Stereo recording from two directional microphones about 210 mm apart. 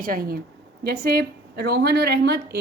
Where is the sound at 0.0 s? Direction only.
45° right (ahead or behind).